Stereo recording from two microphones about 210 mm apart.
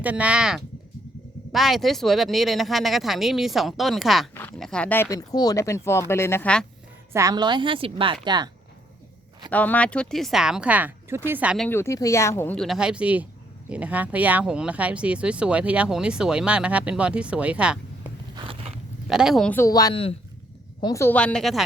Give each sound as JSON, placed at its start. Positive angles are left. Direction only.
{"t": 0.0, "sound": "speech", "side_deg": -5}
{"t": 7.1, "sound": "a woman's voice", "side_deg": -15}
{"t": 9.5, "sound": "speech", "side_deg": 5}
{"t": 11.8, "sound": "speech", "side_deg": 15}
{"t": 18.3, "sound": "vehicle", "side_deg": -25}
{"t": 19.0, "sound": "speech", "side_deg": -5}
{"t": 20.8, "sound": "speech", "side_deg": 15}